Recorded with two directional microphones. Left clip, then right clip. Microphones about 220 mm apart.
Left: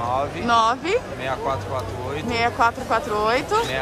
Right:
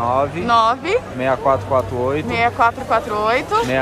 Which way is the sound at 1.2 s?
30° right (ahead or behind).